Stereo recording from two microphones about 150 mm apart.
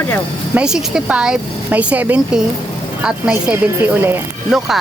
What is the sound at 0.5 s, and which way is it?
Speech, 5° right (ahead or behind).